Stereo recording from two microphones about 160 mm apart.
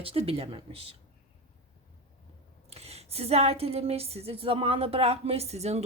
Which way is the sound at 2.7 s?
40° right (ahead or behind).